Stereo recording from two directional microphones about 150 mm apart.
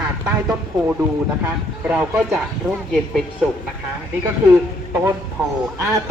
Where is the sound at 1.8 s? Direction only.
10° right (ahead or behind).